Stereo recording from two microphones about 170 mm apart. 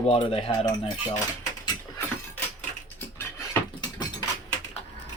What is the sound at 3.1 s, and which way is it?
Wood, 20° left (ahead or behind).